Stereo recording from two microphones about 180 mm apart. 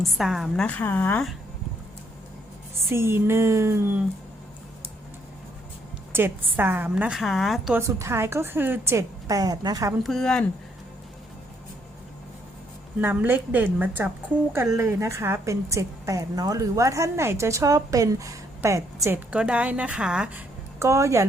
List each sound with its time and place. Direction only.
0.2 s a woman's voice: centre (ahead or behind)
2.9 s a woman's voice: 15° right (ahead or behind)
6.1 s a woman's voice: 10° right (ahead or behind)
7.8 s a woman's voice: 15° right (ahead or behind)
10.0 s a woman's voice: centre (ahead or behind)
13.0 s a woman's voice: 10° right (ahead or behind)